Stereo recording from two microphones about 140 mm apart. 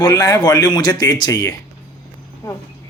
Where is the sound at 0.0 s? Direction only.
30° left (ahead or behind).